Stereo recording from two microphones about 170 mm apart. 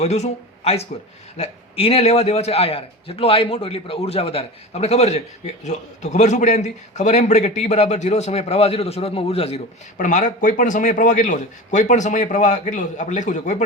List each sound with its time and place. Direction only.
0.0 s a man's voice: 40° left (ahead or behind)
10.0 s a man's voice: 45° left (ahead or behind)